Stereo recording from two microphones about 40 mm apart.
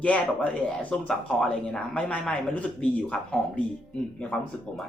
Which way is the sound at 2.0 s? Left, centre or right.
Left.